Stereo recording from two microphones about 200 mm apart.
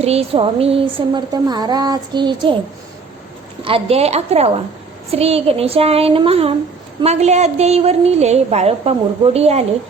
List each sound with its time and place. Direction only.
0.0 s speech: 30° right (ahead or behind)
3.6 s a woman's voice: 25° right (ahead or behind)